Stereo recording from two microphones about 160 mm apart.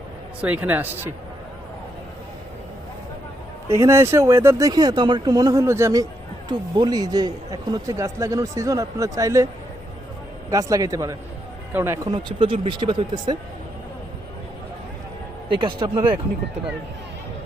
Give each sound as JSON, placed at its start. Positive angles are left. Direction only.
{"t": 0.4, "sound": "speech", "side_deg": -10}
{"t": 3.7, "sound": "speech", "side_deg": -15}
{"t": 10.5, "sound": "speech", "side_deg": -20}
{"t": 12.1, "sound": "speech", "side_deg": -30}
{"t": 15.4, "sound": "speech", "side_deg": -30}